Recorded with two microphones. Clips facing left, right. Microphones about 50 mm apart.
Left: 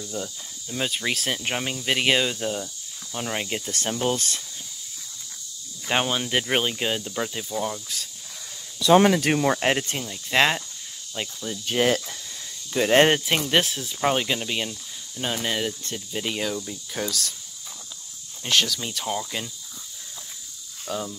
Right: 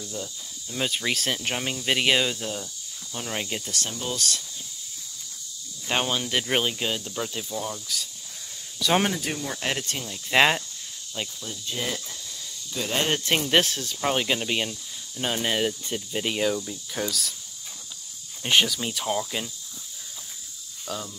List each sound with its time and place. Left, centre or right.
0.0 s speech: centre
0.7 s speech: centre
3.7 s speech: left
5.9 s speech: centre
9.2 s speech: left
9.6 s speech: left
10.3 s speech: centre
11.2 s speech: centre
11.6 s speech: left
12.7 s speech: left
13.5 s speech: centre
14.1 s speech: centre
18.4 s speech: centre
20.8 s speech: centre